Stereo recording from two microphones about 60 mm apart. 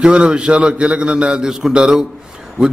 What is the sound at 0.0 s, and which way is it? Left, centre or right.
A man's voice, centre.